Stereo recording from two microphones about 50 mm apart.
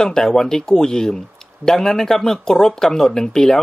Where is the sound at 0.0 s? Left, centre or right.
Centre.